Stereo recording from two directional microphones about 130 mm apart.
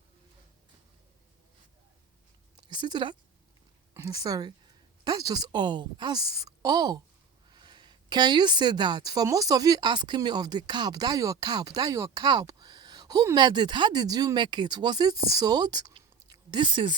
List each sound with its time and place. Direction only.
2.6 s a woman's voice: 35° right (ahead or behind)